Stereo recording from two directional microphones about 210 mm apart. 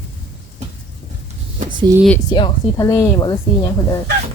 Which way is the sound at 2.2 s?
20° left (ahead or behind).